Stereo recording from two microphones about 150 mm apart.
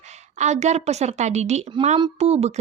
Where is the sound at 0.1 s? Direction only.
50° right (ahead or behind).